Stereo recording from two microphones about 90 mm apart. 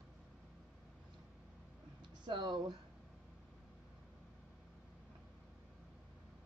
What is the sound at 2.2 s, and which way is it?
Speech, 55° right (ahead or behind).